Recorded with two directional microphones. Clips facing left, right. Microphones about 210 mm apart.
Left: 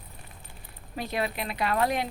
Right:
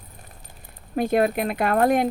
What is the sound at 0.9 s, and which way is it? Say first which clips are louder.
A woman's voice: right 10 dB; 50° right (ahead or behind).